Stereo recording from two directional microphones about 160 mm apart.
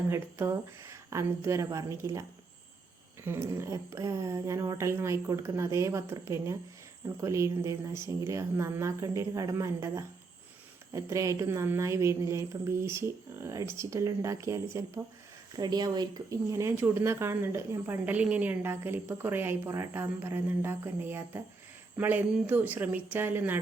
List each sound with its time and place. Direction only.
0.1 s speech: 15° right (ahead or behind)
3.2 s speech: 15° right (ahead or behind)